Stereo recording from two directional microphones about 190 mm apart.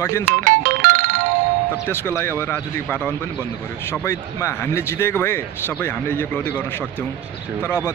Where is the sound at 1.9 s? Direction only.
10° left (ahead or behind).